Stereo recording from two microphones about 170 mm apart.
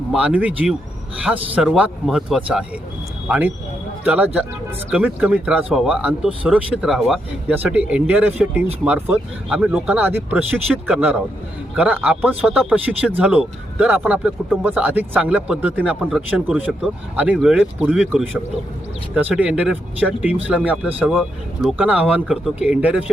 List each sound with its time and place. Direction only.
0.1 s speech: 5° right (ahead or behind)
21.0 s speech: 5° left (ahead or behind)